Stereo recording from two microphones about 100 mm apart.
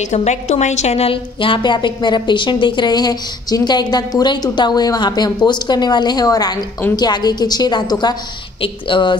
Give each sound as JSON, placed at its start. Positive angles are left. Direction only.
{"t": 0.7, "sound": "a woman's voice", "side_deg": 90}
{"t": 8.5, "sound": "a woman's voice", "side_deg": 55}